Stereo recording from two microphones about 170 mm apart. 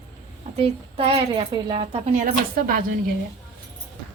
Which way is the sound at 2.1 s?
50° right (ahead or behind).